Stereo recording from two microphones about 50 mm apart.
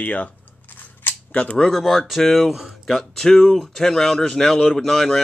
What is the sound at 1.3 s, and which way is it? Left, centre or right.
Speech, left.